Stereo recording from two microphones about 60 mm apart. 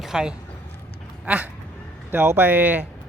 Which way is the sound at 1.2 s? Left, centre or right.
Right.